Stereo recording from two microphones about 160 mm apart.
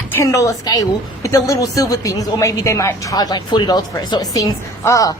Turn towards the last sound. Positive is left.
turn(degrees=20)  # may be behind; listen again after turning